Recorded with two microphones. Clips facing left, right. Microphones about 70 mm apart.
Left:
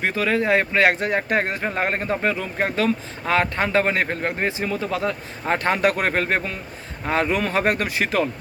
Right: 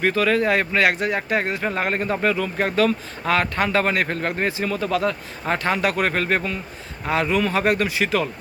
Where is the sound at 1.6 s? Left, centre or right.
Left.